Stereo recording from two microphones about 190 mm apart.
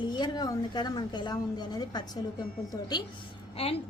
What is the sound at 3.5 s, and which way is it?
Speech, 30° left (ahead or behind).